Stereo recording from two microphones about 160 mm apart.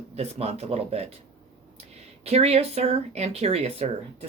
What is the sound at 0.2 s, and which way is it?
Speech, 40° right (ahead or behind).